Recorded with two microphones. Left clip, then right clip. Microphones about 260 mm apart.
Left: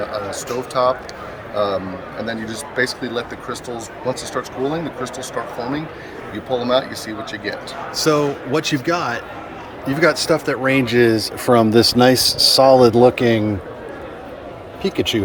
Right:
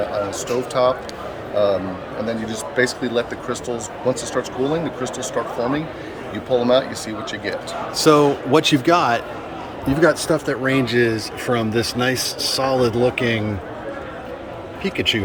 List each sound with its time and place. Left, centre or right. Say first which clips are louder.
0.3 s speech: right 2 dB; centre
6.5 s speech: right 2 dB; centre; by 13.4 s left